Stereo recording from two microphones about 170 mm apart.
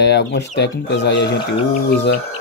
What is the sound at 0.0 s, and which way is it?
Speech, 85° left.